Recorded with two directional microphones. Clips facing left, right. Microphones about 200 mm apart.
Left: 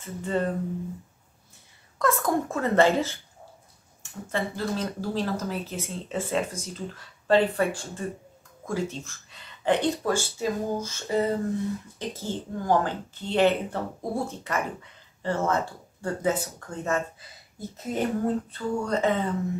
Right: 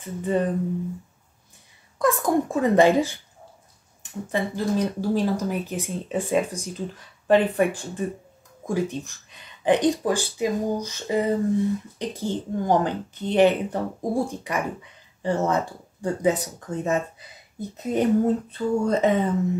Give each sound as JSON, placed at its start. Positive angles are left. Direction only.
{"t": 0.0, "sound": "speech", "side_deg": -15}
{"t": 2.0, "sound": "speech", "side_deg": -15}